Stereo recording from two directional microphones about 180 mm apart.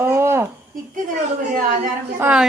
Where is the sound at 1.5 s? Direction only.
50° right (ahead or behind).